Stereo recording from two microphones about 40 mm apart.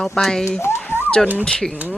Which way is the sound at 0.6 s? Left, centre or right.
Left.